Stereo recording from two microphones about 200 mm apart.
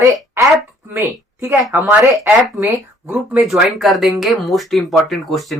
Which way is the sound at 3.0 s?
5° right (ahead or behind).